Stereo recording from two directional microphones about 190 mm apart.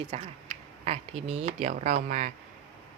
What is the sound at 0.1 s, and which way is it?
Speech, 35° right (ahead or behind).